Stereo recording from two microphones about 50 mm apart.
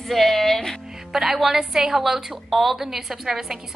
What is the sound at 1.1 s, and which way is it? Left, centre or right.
A woman's voice, centre.